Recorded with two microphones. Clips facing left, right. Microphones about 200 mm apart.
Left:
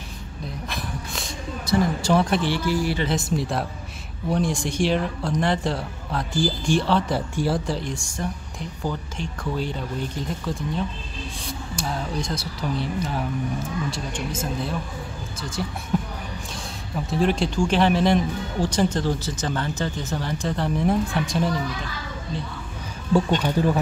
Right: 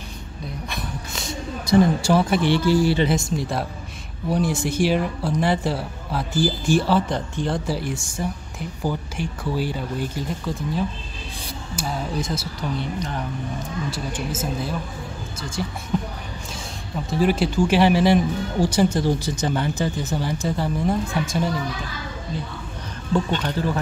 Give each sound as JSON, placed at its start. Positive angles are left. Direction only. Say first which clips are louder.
{"t": 0.7, "sound": "a sound", "louder": "even", "side_deg": 0}
{"t": 1.7, "sound": "speech", "louder": "right 4 dB", "side_deg": -10}
{"t": 2.5, "sound": "speech", "louder": "right 5 dB", "side_deg": -30}
{"t": 3.2, "sound": "speech", "louder": "even", "side_deg": 0}
{"t": 7.1, "sound": "speech", "louder": "left 1 dB", "side_deg": 5}
{"t": 7.6, "sound": "speech", "louder": "right 2 dB", "side_deg": -5}
{"t": 15.9, "sound": "a sound", "louder": "even", "side_deg": 5}
{"t": 16.9, "sound": "speech", "louder": "right 1 dB", "side_deg": 0}
{"t": 23.4, "sound": "speech", "louder": "left 3 dB", "side_deg": 10}